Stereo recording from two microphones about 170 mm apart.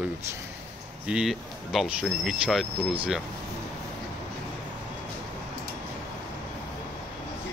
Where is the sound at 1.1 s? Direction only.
5° right (ahead or behind).